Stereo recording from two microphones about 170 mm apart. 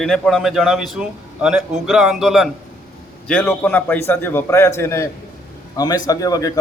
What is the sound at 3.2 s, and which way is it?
A man's voice, 10° left (ahead or behind).